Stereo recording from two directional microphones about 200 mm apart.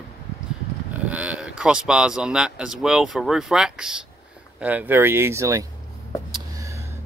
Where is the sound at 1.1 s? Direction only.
5° right (ahead or behind).